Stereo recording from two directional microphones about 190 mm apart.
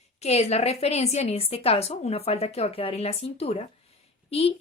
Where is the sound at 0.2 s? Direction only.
35° left (ahead or behind).